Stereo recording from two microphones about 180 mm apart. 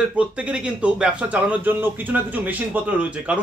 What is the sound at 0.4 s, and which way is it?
A man's voice, 5° right (ahead or behind).